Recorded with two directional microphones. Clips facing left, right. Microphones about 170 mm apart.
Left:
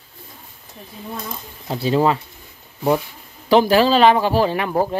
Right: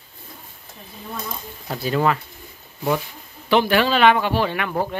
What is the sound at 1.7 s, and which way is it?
Speech, 25° left (ahead or behind).